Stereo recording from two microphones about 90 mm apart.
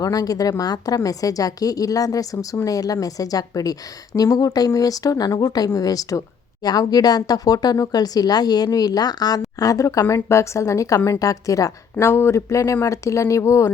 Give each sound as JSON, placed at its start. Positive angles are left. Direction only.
{"t": 0.0, "sound": "a woman's voice", "side_deg": 45}